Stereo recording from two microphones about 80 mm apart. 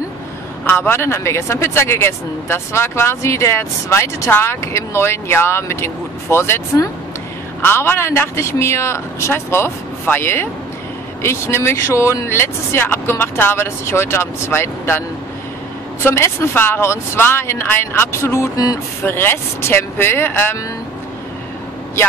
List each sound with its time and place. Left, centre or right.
0.7 s speech: left